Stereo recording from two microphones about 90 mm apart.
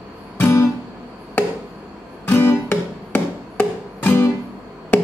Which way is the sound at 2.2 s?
20° left (ahead or behind).